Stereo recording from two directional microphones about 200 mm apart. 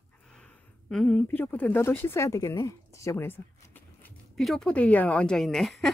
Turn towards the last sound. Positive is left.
turn(degrees=0)  # may be behind; listen again after turning